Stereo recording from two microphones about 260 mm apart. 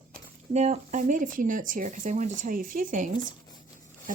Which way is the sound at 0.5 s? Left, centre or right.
Right.